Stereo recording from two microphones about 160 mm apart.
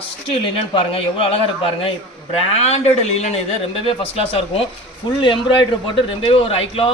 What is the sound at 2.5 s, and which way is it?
A man's voice, 45° left (ahead or behind).